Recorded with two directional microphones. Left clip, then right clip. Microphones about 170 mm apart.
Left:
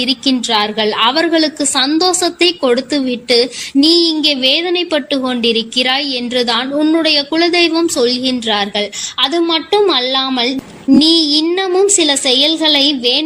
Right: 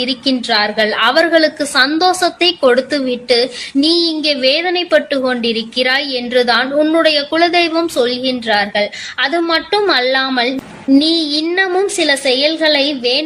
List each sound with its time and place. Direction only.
0.0 s a woman's voice: 35° left (ahead or behind)